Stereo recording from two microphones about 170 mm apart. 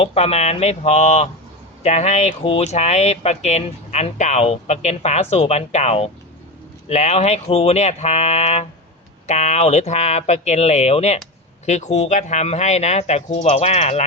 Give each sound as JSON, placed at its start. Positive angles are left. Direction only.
{"t": 0.0, "sound": "speech", "side_deg": 35}